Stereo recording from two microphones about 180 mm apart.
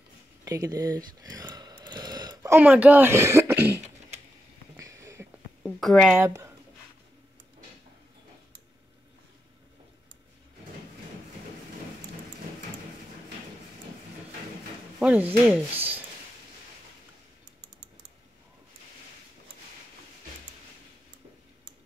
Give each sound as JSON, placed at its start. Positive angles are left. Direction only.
{"t": 0.5, "sound": "speech", "side_deg": -20}
{"t": 4.7, "sound": "a sound", "side_deg": -15}
{"t": 5.6, "sound": "speech", "side_deg": 0}
{"t": 6.1, "sound": "speech", "side_deg": -15}
{"t": 15.0, "sound": "speech", "side_deg": -10}